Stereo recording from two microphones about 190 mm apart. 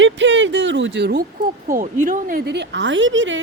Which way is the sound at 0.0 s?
75° right (ahead or behind).